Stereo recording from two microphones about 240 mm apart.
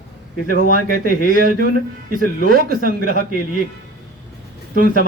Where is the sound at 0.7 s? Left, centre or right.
Right.